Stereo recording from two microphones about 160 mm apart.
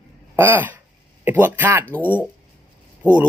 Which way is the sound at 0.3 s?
15° right (ahead or behind).